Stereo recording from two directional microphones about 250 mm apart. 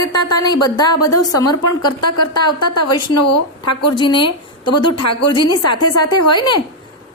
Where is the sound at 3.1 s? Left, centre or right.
Left.